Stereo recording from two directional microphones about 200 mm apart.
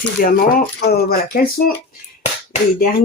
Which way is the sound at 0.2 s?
45° left (ahead or behind).